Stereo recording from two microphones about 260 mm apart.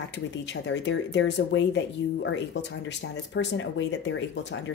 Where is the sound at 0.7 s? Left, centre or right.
Left.